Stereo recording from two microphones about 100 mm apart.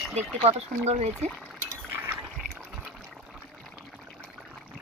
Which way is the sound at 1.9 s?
20° right (ahead or behind).